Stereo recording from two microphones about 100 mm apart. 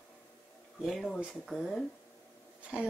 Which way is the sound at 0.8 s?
Centre (ahead or behind).